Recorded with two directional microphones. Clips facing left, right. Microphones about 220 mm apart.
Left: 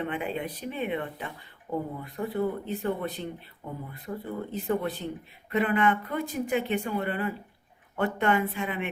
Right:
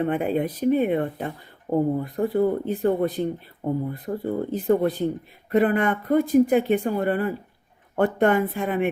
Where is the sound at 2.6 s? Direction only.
50° right (ahead or behind).